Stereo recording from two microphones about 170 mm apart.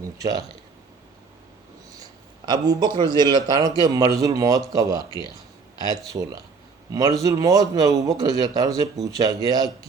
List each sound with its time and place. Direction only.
0.0 s speech: 20° right (ahead or behind)
2.5 s a man's voice: 25° right (ahead or behind)